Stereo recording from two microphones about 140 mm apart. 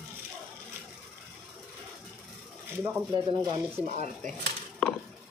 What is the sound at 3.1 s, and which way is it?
Speech, 35° right (ahead or behind).